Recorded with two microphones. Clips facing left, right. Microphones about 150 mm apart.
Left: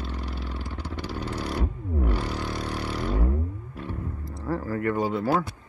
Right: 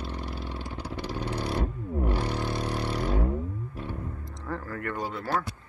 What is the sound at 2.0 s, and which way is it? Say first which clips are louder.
Vehicle: right 2 dB; 35° right (ahead or behind).